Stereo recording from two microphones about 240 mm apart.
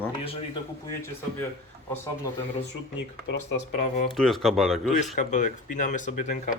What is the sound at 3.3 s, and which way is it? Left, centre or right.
Speech, left.